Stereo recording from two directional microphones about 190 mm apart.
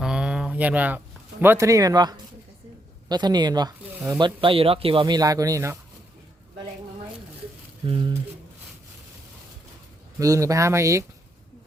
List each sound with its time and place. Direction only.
0.0 s a sound: 5° right (ahead or behind); by 2.1 s 20° right (ahead or behind)
3.1 s speech: 20° right (ahead or behind)
3.9 s speech: 10° right (ahead or behind)
4.2 s speech: 25° right (ahead or behind)
7.9 s speech: 25° right (ahead or behind)
10.2 s speech: 15° right (ahead or behind)